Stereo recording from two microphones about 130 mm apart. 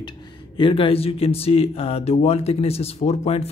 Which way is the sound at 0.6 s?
40° left (ahead or behind).